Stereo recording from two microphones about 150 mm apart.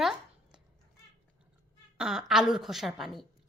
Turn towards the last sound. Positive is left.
turn(degrees=0)  # may be behind; listen again after turning